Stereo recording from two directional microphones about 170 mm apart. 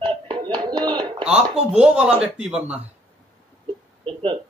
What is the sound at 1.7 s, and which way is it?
Speech, 5° right (ahead or behind).